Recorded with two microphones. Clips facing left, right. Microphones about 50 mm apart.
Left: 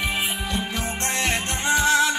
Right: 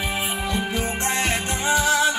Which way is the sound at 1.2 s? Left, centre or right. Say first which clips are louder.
Right 1 dB; left.